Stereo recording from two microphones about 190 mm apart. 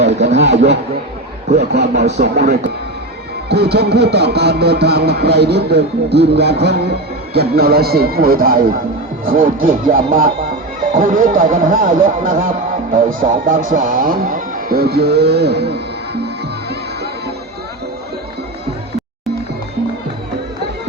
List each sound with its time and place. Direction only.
0.0 s a sound: 35° right (ahead or behind)
1.5 s music: 60° right (ahead or behind)
1.9 s speech: 35° right (ahead or behind)
2.2 s music: 60° right (ahead or behind)
9.2 s speech: 50° right (ahead or behind)